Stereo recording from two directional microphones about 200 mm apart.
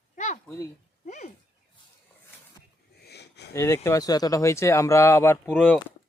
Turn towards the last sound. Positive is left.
turn(degrees=10)  # may be behind; listen again after turning